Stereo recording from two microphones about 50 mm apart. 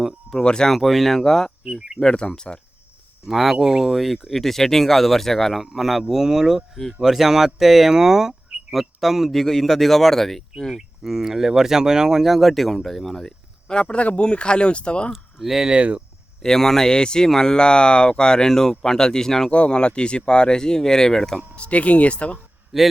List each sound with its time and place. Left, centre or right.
0.4 s speech: centre
0.7 s speech: centre
3.2 s speech: centre
9.3 s speech: centre
10.8 s speech: centre
13.7 s speech: left
15.1 s speech: centre
15.7 s speech: right
16.4 s speech: centre
19.5 s speech: left
21.5 s speech: left
22.7 s speech: centre